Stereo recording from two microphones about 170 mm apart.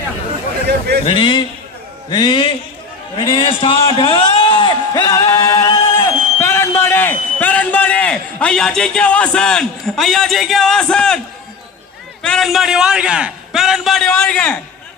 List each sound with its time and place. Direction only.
1.0 s a man's voice: 30° left (ahead or behind); by 11.2 s 5° left (ahead or behind)
12.2 s a man's voice: 5° left (ahead or behind)